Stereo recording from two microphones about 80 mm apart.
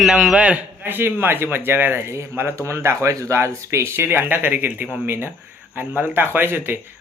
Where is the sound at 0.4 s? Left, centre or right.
Centre.